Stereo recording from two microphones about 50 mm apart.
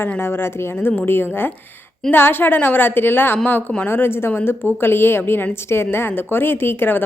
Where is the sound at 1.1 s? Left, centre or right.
Left.